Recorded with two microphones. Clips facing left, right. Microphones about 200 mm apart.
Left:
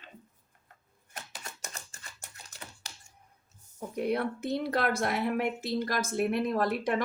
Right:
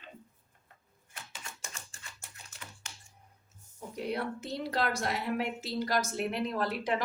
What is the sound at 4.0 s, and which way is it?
A woman's voice, 55° left (ahead or behind).